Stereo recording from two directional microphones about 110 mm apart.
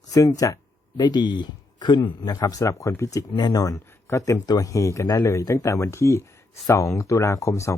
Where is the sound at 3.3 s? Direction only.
40° left (ahead or behind).